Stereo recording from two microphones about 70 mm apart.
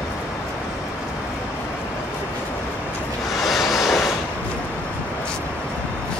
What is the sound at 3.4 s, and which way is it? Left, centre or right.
Vehicle, centre.